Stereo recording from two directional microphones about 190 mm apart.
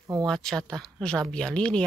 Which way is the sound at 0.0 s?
15° right (ahead or behind).